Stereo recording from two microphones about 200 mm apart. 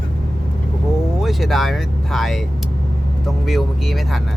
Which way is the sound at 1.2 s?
Centre (ahead or behind).